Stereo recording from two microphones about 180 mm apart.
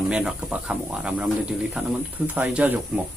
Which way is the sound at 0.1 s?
5° right (ahead or behind).